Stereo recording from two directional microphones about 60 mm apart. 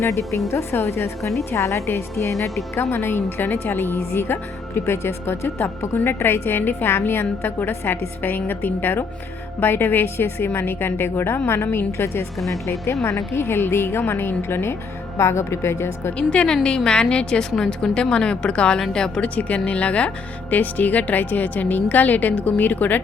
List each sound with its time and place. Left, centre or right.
0.0 s a woman's voice: left
2.7 s a woman's voice: left
16.1 s a woman's voice: centre
19.4 s speech: left